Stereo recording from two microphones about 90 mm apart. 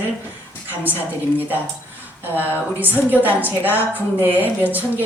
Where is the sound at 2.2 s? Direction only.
20° right (ahead or behind).